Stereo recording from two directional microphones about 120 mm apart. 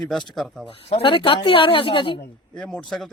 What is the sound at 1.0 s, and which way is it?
Speech, 45° left (ahead or behind).